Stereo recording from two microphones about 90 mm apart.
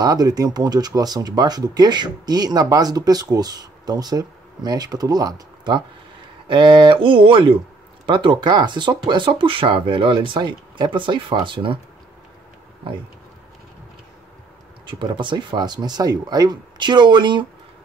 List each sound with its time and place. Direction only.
0.0 s speech: 45° right (ahead or behind)
5.7 s speech: 55° right (ahead or behind); by 7.5 s 75° right (ahead or behind)
8.1 s speech: 60° right (ahead or behind)
14.9 s speech: 60° right (ahead or behind)